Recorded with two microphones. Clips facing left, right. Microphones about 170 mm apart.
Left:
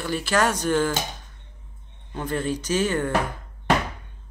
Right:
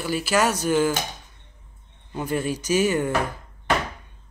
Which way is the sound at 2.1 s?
10° right (ahead or behind).